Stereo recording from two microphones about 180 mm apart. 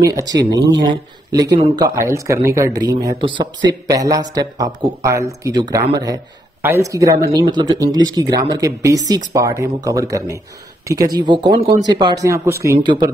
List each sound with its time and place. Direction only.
0.0 s a man's voice: 20° right (ahead or behind)